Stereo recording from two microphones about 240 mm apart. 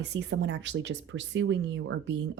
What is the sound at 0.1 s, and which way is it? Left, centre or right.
Speech, right.